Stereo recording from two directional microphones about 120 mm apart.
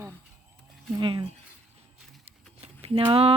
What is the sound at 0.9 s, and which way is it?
Speech, 40° right (ahead or behind).